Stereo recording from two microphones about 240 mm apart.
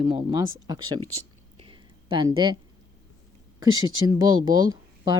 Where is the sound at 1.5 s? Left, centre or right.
Right.